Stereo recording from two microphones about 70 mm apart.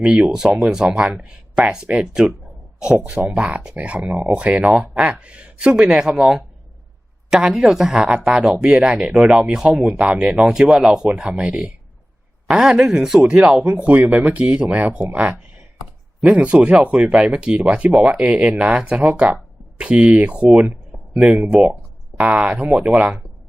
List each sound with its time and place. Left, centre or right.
0.0 s speech: centre